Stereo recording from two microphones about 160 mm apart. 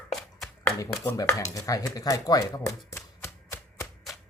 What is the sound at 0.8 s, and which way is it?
Speech, 20° left (ahead or behind).